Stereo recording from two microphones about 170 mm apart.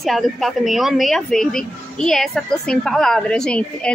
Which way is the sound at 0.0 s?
Centre (ahead or behind).